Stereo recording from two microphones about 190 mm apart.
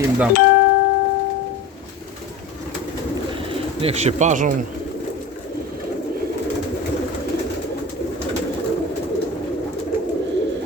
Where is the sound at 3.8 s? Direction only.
35° right (ahead or behind).